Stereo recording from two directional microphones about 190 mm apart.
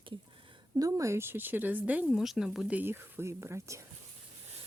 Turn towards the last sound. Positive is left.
turn(degrees=-15)  # may be behind; listen again after turning